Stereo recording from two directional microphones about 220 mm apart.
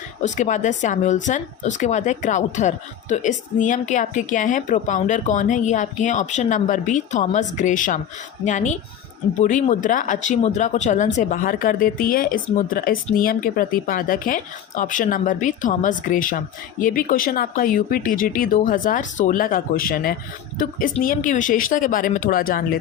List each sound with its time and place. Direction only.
0.2 s speech: 35° left (ahead or behind)